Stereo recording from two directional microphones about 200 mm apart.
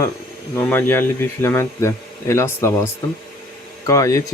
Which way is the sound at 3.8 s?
15° left (ahead or behind).